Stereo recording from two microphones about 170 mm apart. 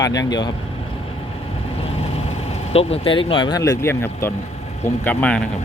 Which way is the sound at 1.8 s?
35° left (ahead or behind).